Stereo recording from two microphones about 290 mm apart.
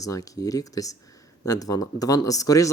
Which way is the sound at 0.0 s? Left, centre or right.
Centre.